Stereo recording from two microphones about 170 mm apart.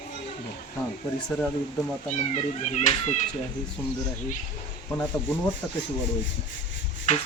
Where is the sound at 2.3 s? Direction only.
40° left (ahead or behind).